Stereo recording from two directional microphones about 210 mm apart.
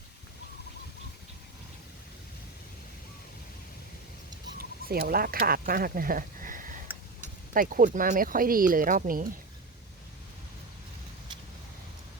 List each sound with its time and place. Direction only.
4.9 s speech: 45° right (ahead or behind)